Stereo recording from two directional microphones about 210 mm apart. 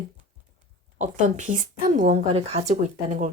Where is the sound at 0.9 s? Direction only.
35° right (ahead or behind).